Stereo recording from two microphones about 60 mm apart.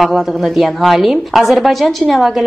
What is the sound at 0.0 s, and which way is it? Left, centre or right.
A woman's voice, centre.